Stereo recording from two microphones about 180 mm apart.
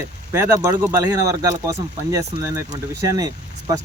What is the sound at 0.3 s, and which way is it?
A man's voice, 10° right (ahead or behind).